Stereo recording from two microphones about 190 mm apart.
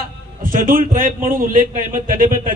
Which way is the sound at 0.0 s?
50° right (ahead or behind).